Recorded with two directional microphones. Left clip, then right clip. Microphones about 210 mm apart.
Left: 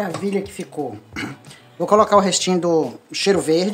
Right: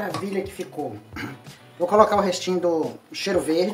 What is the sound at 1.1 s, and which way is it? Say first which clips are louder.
Speech: left 5 dB; 55° left (ahead or behind).